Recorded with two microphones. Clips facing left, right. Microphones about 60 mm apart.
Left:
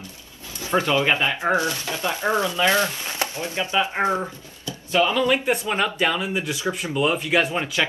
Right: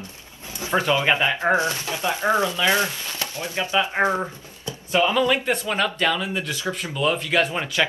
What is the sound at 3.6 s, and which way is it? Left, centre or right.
Speech, left.